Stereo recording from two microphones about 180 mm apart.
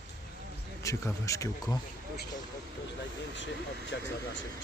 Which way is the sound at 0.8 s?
15° left (ahead or behind).